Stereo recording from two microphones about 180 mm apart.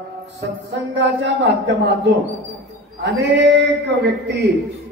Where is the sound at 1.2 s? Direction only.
75° right (ahead or behind).